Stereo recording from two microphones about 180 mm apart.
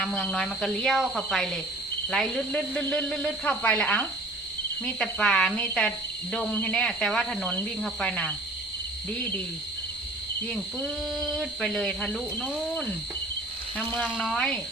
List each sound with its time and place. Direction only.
0.0 s speech: 5° left (ahead or behind)
10.5 s speech: 5° left (ahead or behind)